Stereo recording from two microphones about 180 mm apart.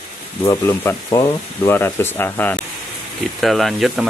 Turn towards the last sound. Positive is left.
turn(degrees=0)  # may be behind; listen again after turning